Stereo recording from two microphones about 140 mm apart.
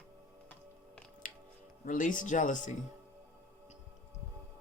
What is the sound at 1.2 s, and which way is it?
Music, 70° left (ahead or behind).